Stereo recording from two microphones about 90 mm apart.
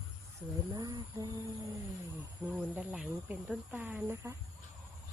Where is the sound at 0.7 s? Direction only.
45° right (ahead or behind).